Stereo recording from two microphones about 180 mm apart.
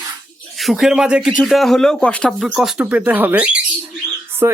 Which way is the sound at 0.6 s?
Centre (ahead or behind).